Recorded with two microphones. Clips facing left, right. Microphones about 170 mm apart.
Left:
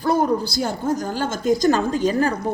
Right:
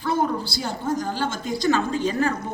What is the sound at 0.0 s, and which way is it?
A woman's voice, 40° left (ahead or behind).